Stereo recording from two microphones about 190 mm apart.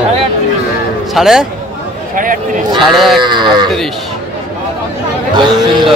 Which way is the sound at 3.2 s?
25° right (ahead or behind).